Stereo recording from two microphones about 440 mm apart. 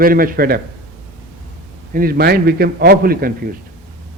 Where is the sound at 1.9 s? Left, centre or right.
Centre.